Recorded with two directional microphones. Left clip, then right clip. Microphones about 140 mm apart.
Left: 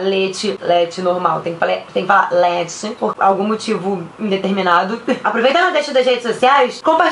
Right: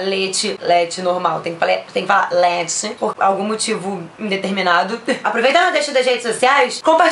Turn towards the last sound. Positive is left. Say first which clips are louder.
# even
turn(degrees=-30)  # may be behind; listen again after turning